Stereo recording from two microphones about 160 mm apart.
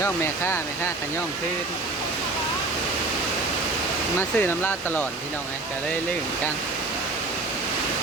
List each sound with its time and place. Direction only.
0.0 s speech: 15° left (ahead or behind)
4.2 s speech: 15° left (ahead or behind)